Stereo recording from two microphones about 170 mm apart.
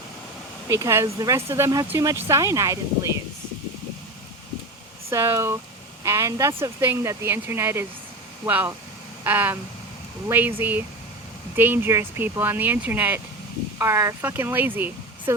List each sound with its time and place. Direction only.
0.7 s speech: 15° right (ahead or behind)
5.0 s speech: 15° right (ahead or behind)